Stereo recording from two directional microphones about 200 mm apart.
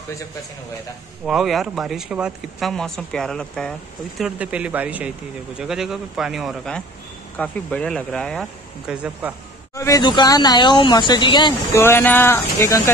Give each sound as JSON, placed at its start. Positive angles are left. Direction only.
{"t": 1.2, "sound": "speech", "side_deg": 0}
{"t": 9.8, "sound": "speech", "side_deg": 15}
{"t": 11.8, "sound": "speech", "side_deg": 10}